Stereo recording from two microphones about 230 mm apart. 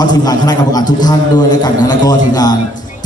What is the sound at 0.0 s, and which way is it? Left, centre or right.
A man's voice, centre.